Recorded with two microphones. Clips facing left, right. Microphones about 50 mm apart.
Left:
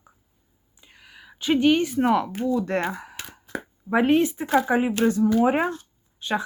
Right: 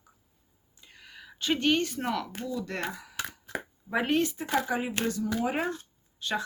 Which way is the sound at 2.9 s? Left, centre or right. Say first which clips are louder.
Right 1 dB; left.